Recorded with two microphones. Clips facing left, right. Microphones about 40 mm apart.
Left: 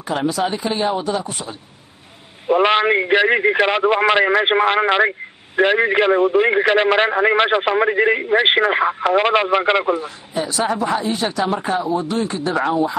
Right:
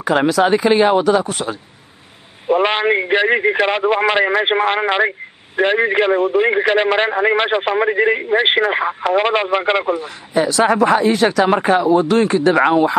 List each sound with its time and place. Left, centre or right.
0.0 s speech: right
2.4 s a man's voice: centre
10.0 s speech: right